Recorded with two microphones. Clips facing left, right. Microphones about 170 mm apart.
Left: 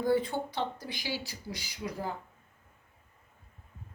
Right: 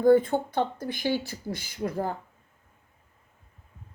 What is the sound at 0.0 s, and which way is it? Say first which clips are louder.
A woman's voice: right 9 dB; 50° right (ahead or behind).